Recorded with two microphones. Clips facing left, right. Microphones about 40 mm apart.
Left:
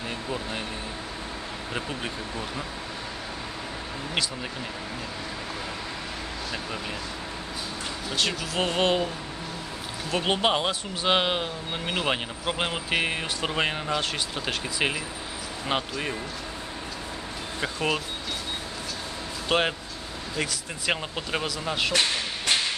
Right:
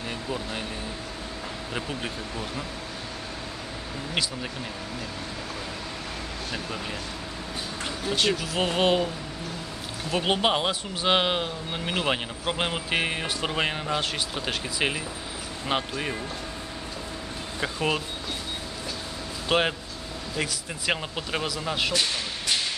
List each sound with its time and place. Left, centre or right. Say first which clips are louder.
8.2 s speech: right 1 dB; centre
10.1 s speech: even; centre
17.6 s speech: even; centre
19.5 s speech: right 1 dB; centre
22.5 s whip: left 3 dB; left